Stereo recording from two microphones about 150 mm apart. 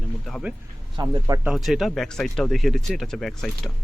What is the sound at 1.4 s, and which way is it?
Speech, centre (ahead or behind).